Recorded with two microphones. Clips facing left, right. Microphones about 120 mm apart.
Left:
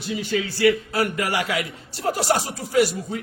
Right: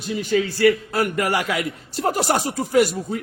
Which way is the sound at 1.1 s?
50° right (ahead or behind).